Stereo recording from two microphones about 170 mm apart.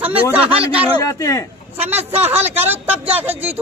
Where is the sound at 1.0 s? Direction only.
20° left (ahead or behind).